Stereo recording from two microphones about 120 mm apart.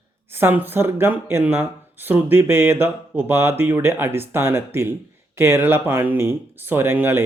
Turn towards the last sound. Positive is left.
turn(degrees=-20)  # may be behind; listen again after turning